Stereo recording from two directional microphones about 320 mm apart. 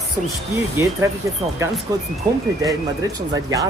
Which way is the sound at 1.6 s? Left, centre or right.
Centre.